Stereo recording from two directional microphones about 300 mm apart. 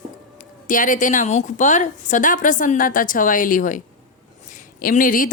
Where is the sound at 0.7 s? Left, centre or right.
Left.